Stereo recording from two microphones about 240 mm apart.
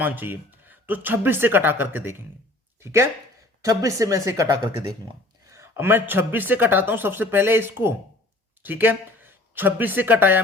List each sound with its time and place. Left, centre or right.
0.0 s a man's voice: centre